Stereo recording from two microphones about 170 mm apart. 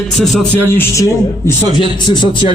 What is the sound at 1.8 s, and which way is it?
Speech, 30° left (ahead or behind).